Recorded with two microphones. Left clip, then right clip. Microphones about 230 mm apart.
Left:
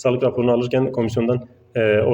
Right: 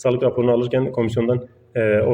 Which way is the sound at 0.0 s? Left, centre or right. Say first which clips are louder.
Even; centre.